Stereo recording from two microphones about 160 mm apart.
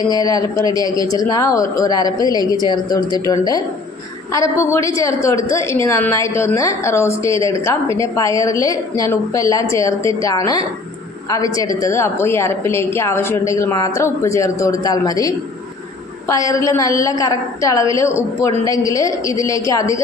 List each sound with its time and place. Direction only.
0.1 s a woman's voice: 25° left (ahead or behind)
16.3 s a woman's voice: 20° left (ahead or behind)